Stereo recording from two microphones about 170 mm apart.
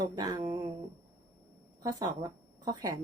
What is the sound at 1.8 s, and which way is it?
Speech, 20° right (ahead or behind).